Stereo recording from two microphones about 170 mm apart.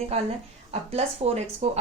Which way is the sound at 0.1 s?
40° right (ahead or behind).